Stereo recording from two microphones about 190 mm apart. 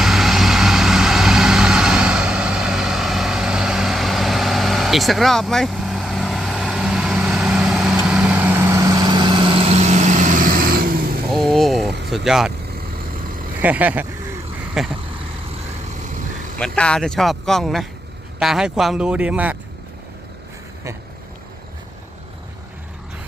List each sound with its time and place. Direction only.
0.0 s vehicle: centre (ahead or behind); by 11.2 s 50° right (ahead or behind)
11.3 s vehicle: centre (ahead or behind)
11.9 s vehicle: 65° right (ahead or behind)
12.1 s speech: centre (ahead or behind)
13.6 s speech: 10° right (ahead or behind)
16.6 s speech: 5° left (ahead or behind)